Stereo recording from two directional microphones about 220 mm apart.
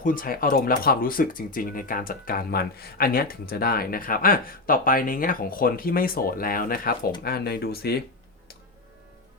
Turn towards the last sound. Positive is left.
turn(degrees=45)  # may be behind; listen again after turning